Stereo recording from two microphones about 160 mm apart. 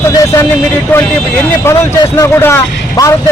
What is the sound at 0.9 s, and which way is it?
Speech, 10° left (ahead or behind).